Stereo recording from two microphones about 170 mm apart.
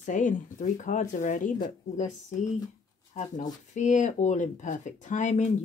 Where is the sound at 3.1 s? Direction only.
45° left (ahead or behind).